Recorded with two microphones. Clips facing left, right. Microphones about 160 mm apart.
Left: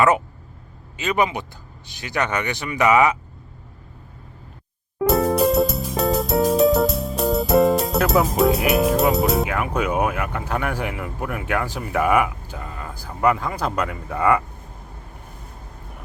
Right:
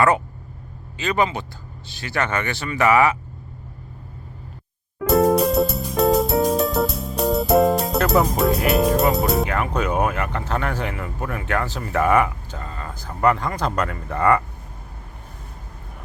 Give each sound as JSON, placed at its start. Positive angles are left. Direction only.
{"t": 0.9, "sound": "speech", "side_deg": 20}
{"t": 5.0, "sound": "music", "side_deg": 0}